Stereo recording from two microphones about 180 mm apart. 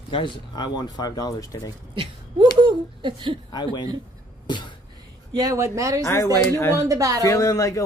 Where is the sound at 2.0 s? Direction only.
25° right (ahead or behind).